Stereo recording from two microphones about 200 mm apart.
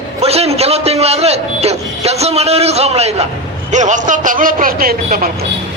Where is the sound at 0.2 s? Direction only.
30° right (ahead or behind).